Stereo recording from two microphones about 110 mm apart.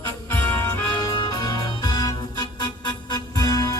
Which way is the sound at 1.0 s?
45° left (ahead or behind).